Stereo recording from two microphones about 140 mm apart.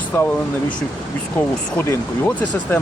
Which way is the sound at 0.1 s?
15° left (ahead or behind).